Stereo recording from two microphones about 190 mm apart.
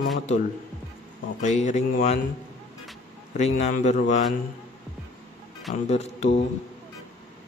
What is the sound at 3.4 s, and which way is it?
Speech, 40° left (ahead or behind).